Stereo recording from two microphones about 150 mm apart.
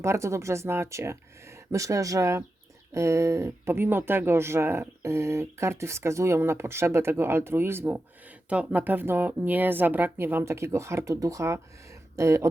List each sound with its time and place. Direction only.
0.0 s speech: 20° right (ahead or behind)